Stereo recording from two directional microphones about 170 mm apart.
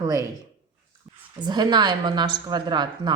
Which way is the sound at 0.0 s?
20° right (ahead or behind).